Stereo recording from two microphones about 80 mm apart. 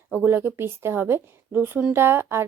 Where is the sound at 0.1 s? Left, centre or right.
Right.